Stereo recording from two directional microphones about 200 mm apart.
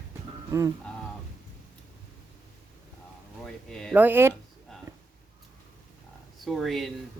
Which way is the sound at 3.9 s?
10° right (ahead or behind).